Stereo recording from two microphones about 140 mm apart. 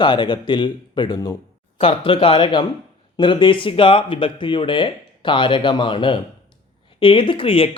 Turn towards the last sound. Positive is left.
turn(degrees=40)  # may be behind; listen again after turning